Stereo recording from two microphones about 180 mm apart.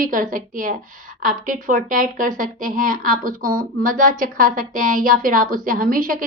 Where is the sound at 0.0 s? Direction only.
50° right (ahead or behind).